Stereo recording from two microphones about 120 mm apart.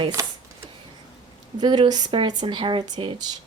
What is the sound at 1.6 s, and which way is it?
Speech, 40° right (ahead or behind).